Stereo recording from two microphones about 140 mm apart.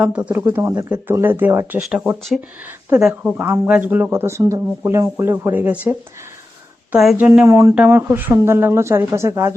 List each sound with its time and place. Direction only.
0.0 s speech: 10° right (ahead or behind)
6.9 s speech: centre (ahead or behind)
7.2 s speech: 15° right (ahead or behind)